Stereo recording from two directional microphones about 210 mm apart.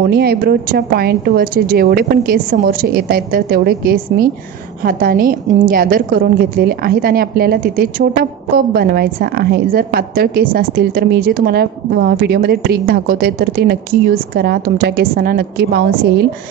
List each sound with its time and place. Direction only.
0.1 s a woman's voice: 50° right (ahead or behind)